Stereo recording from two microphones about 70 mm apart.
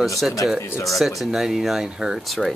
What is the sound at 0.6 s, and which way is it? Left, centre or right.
Speech, left.